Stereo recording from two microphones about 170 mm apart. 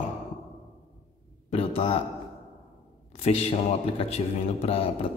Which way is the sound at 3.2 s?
35° left (ahead or behind).